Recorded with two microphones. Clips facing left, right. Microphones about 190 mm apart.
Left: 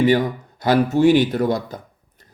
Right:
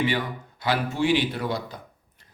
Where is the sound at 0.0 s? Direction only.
40° left (ahead or behind).